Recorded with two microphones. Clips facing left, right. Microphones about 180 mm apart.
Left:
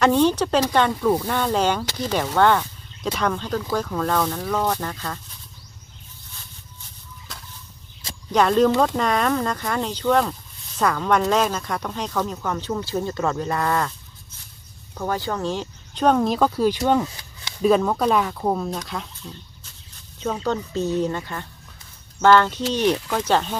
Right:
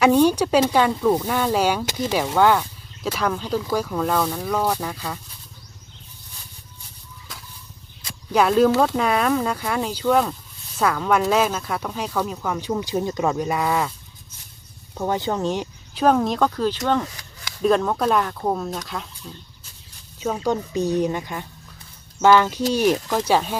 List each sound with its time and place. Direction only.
0.0 s speech: 10° right (ahead or behind)
8.3 s speech: 5° right (ahead or behind)
15.0 s speech: 20° right (ahead or behind)
15.9 s speech: 5° right (ahead or behind)
20.2 s speech: 10° right (ahead or behind)